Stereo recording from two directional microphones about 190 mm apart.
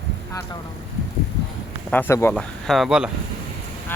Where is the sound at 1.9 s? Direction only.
10° left (ahead or behind).